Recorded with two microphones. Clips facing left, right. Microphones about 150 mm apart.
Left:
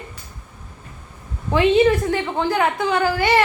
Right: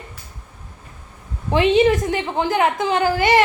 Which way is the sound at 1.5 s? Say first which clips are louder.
Even; 15° right (ahead or behind).